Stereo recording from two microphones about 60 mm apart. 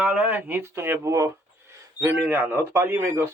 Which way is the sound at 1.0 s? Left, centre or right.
Right.